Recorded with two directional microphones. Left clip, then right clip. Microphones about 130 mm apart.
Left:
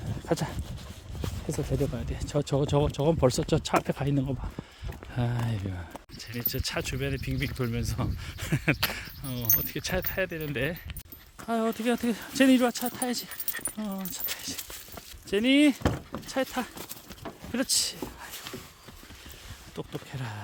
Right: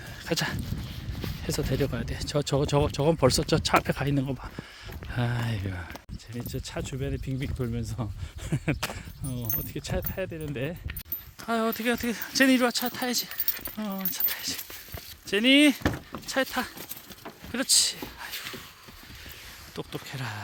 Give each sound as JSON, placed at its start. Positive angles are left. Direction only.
{"t": 0.3, "sound": "speech", "side_deg": 20}
{"t": 1.8, "sound": "speech", "side_deg": 0}
{"t": 11.8, "sound": "speech", "side_deg": 35}
{"t": 12.4, "sound": "speech", "side_deg": 20}
{"t": 13.8, "sound": "speech", "side_deg": -5}
{"t": 14.3, "sound": "speech", "side_deg": 10}
{"t": 17.5, "sound": "speech", "side_deg": 30}
{"t": 19.7, "sound": "speech", "side_deg": 10}